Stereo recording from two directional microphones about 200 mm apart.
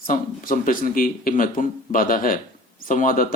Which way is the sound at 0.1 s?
40° left (ahead or behind).